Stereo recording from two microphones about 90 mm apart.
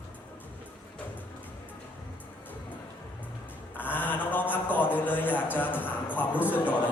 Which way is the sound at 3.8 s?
20° left (ahead or behind).